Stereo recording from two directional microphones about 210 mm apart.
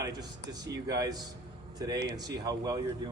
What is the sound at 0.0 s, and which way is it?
Speech, 20° right (ahead or behind).